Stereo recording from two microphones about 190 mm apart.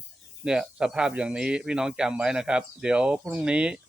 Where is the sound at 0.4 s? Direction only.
5° right (ahead or behind).